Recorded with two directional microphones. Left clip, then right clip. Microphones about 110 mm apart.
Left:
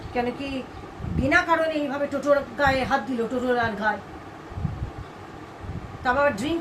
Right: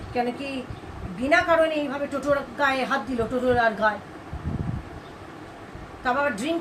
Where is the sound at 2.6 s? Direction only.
20° right (ahead or behind).